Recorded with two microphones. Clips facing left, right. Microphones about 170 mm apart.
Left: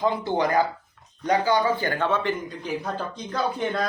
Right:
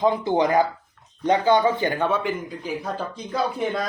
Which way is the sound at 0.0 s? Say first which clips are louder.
Right 3 dB; 20° right (ahead or behind).